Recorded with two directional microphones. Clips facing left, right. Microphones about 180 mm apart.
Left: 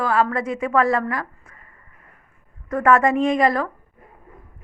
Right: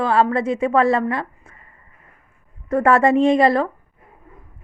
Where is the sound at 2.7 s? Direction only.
30° right (ahead or behind).